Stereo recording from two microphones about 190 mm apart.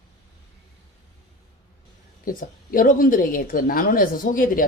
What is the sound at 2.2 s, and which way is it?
A woman's voice, 50° left (ahead or behind).